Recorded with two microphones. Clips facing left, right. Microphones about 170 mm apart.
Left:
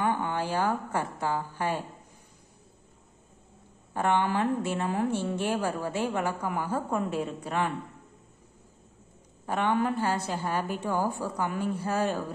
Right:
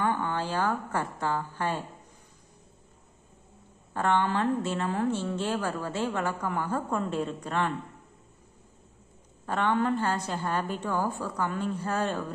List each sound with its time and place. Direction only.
0.0 s a woman's voice: 15° left (ahead or behind)
3.9 s a woman's voice: 15° left (ahead or behind)
9.5 s a woman's voice: 15° left (ahead or behind)